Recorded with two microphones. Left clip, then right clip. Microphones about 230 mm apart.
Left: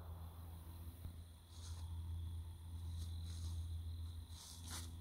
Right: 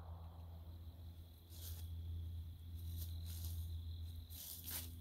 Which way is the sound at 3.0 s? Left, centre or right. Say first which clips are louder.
Right 1 dB; centre.